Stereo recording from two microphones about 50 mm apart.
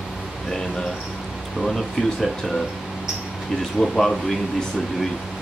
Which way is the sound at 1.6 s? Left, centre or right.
Centre.